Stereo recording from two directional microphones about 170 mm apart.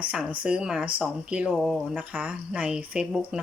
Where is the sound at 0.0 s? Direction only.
5° right (ahead or behind).